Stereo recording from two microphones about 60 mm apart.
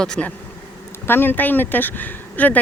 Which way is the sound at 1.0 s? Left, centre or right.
Left.